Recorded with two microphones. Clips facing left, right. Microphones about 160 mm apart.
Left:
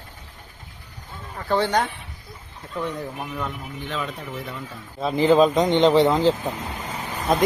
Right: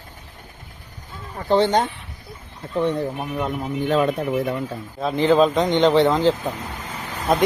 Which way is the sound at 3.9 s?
50° right (ahead or behind).